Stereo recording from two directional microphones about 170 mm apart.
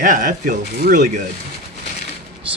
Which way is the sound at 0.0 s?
55° right (ahead or behind).